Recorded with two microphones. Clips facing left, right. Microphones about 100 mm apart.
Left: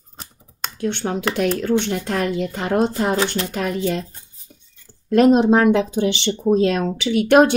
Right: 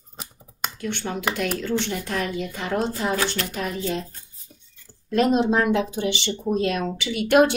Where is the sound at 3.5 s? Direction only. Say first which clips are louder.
Left 5 dB; 55° left (ahead or behind).